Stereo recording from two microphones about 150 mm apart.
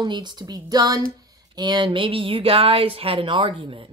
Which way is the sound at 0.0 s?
30° right (ahead or behind).